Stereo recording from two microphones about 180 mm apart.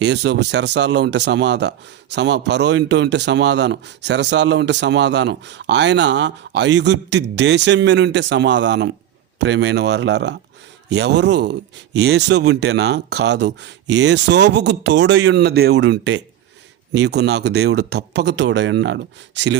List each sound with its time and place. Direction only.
0.0 s speech: 75° right (ahead or behind)